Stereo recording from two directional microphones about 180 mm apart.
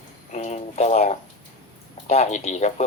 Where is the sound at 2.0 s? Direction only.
40° left (ahead or behind).